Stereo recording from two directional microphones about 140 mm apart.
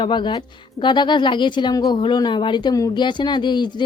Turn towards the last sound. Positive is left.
turn(degrees=30)  # may be behind; listen again after turning